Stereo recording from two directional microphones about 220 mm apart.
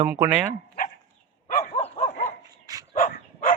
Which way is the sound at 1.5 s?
35° left (ahead or behind).